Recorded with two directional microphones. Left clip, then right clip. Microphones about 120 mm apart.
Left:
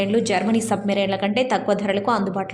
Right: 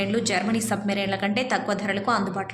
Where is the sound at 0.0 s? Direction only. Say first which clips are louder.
Left 4 dB; 30° left (ahead or behind).